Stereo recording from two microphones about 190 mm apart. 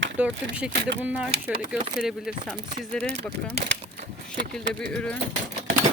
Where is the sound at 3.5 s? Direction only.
60° right (ahead or behind).